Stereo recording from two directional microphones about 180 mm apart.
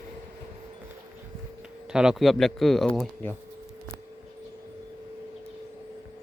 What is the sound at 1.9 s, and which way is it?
Speech, 5° right (ahead or behind).